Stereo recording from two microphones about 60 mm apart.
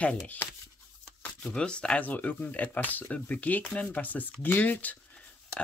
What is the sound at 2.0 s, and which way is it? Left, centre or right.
Speech, left.